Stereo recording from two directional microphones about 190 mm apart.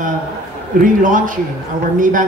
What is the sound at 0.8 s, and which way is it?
A woman's voice, 45° right (ahead or behind).